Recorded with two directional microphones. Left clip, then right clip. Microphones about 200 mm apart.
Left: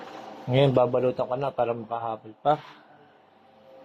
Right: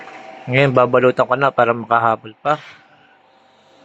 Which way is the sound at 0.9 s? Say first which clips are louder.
Right 11 dB; 20° right (ahead or behind).